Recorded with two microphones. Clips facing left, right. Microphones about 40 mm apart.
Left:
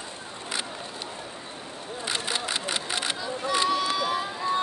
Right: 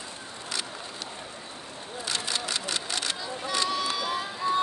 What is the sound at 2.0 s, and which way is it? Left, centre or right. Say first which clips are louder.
Camera: left 2 dB; left.